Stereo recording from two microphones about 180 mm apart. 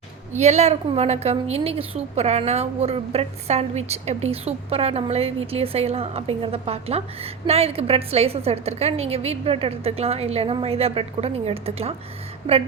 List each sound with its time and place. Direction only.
0.3 s a woman's voice: 40° right (ahead or behind)